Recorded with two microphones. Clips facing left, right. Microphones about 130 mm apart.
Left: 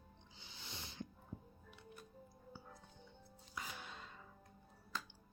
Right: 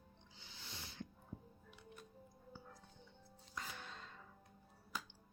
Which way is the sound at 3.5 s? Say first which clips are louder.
Even; 10° left (ahead or behind).